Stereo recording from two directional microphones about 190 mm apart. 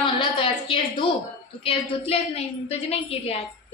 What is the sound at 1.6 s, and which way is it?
A woman's voice, 30° left (ahead or behind).